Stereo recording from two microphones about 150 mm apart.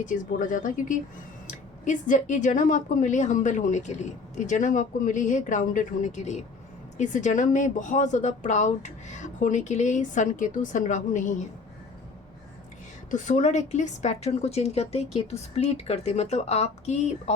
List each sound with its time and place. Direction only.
0.0 s speech: 60° left (ahead or behind)
13.1 s a woman's voice: 55° left (ahead or behind)